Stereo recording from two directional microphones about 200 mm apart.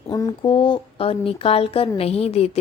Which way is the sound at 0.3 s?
25° left (ahead or behind).